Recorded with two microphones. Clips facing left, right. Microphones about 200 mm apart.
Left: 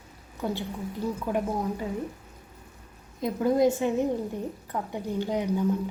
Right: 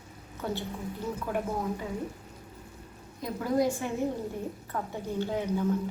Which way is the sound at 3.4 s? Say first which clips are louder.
Left 5 dB; 25° left (ahead or behind).